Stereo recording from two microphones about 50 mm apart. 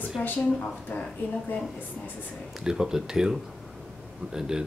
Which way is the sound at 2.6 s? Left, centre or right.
Centre.